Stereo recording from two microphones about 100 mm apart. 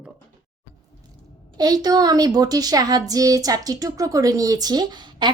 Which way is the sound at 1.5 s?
40° right (ahead or behind).